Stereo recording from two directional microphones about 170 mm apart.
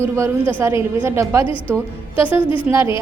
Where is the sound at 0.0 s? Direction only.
15° right (ahead or behind).